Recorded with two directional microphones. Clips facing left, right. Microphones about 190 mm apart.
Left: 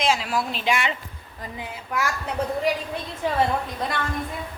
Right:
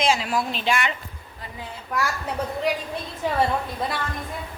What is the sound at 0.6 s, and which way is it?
Speech, 25° left (ahead or behind).